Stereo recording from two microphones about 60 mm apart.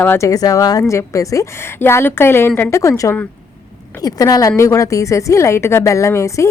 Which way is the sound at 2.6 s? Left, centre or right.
Left.